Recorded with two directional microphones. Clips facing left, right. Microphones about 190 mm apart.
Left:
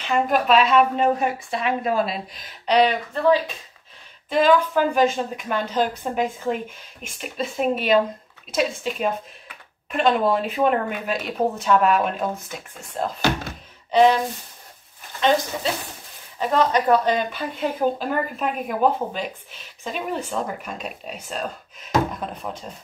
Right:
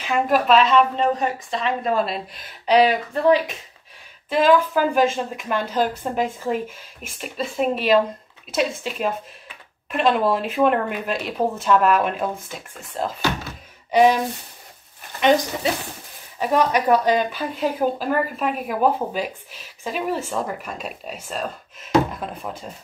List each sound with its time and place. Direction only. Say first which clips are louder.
0.0 s speech: right 1 dB; centre (ahead or behind)
3.3 s speech: right 1 dB; 15° right (ahead or behind)
4.3 s speech: right 1 dB; 5° right (ahead or behind)
13.9 s speech: even; 10° right (ahead or behind)
17.3 s speech: right 2 dB; centre (ahead or behind)